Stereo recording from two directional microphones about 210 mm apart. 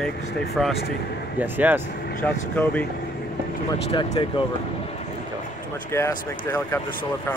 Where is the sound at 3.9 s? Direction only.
20° left (ahead or behind).